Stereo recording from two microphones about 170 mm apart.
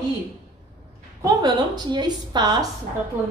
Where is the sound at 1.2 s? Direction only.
25° right (ahead or behind).